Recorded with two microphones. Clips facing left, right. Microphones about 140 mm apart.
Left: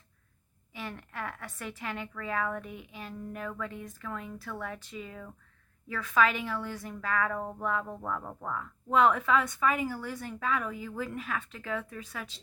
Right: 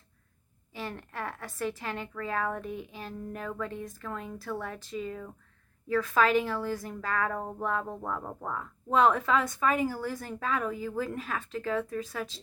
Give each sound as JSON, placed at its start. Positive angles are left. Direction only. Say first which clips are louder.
{"t": 0.7, "sound": "speech", "louder": "right 2 dB", "side_deg": -35}
{"t": 7.9, "sound": "speech", "louder": "right 1 dB", "side_deg": -20}